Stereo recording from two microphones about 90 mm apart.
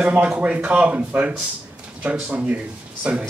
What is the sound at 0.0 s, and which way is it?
Speech, 15° right (ahead or behind).